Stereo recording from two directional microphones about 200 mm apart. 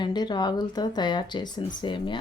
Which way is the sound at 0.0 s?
20° left (ahead or behind).